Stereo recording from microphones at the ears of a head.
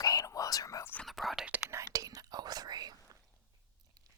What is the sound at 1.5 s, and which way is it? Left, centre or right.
Whispering, right.